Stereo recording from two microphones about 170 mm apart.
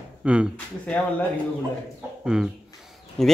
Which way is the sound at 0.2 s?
5° right (ahead or behind).